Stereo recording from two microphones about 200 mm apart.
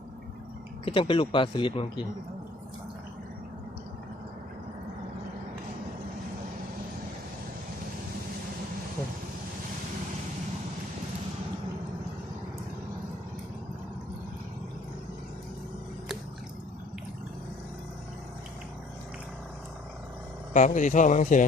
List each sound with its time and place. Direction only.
0.9 s speech: 25° left (ahead or behind)
20.5 s speech: 40° left (ahead or behind)